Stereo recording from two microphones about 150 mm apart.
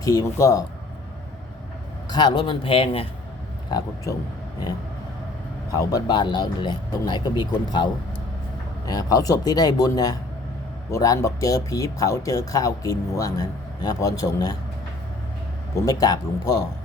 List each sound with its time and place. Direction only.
0.0 s speech: 25° left (ahead or behind)
2.0 s speech: 30° left (ahead or behind)
3.7 s speech: 25° left (ahead or behind)
5.7 s speech: 25° left (ahead or behind)
8.9 s speech: 25° left (ahead or behind)
15.7 s speech: 25° left (ahead or behind)